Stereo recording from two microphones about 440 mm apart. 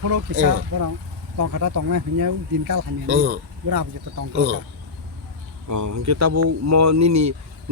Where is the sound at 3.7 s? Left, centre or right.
Right.